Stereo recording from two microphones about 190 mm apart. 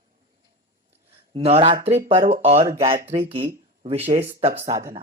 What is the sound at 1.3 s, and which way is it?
Speech, 30° right (ahead or behind).